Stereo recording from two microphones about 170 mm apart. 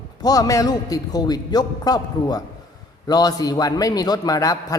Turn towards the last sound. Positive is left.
turn(degrees=20)  # may be behind; listen again after turning